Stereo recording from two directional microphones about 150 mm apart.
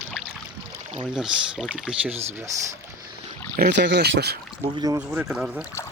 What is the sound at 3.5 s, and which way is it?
Speech, 90° right.